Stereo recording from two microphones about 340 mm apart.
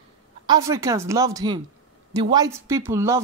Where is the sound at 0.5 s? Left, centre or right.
Centre.